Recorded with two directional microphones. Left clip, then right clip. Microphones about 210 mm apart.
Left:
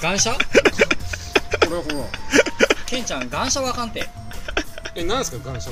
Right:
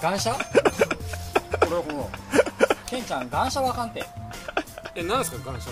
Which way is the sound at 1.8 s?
5° left (ahead or behind).